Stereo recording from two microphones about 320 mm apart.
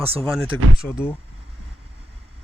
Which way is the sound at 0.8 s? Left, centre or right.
Centre.